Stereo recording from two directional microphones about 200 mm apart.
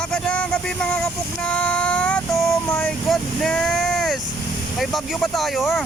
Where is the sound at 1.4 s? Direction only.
5° left (ahead or behind).